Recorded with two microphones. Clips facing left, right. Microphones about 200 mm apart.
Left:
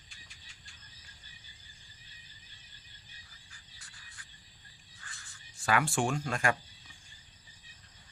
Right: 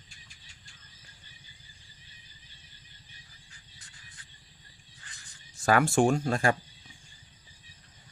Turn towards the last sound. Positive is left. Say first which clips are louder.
# right 6 dB
turn(degrees=-35)  # may be behind; listen again after turning